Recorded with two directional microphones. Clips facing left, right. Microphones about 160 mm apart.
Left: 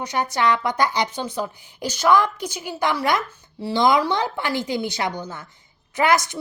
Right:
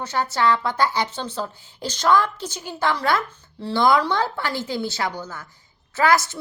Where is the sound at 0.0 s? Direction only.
15° left (ahead or behind).